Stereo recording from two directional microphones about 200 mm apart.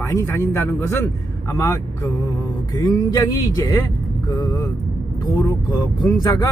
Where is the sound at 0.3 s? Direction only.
10° left (ahead or behind).